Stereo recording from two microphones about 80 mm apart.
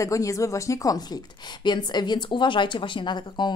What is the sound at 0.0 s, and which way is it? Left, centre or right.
Speech, left.